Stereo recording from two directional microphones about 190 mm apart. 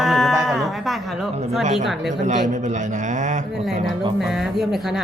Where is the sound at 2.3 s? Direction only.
40° right (ahead or behind).